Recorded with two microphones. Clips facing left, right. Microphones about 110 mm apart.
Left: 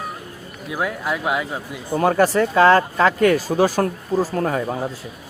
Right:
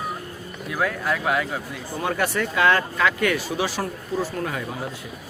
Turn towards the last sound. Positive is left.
turn(degrees=40)  # may be behind; listen again after turning